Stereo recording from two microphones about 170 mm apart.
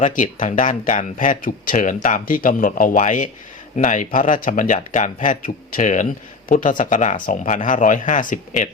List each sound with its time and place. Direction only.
0.0 s speech: 50° left (ahead or behind)